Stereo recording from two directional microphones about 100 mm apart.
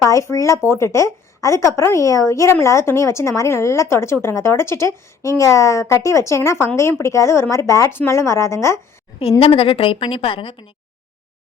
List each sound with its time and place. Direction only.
0.0 s a woman's voice: 30° left (ahead or behind)
9.4 s a woman's voice: 65° left (ahead or behind)